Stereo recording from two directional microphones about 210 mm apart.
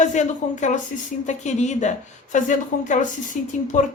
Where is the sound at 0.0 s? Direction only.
35° left (ahead or behind).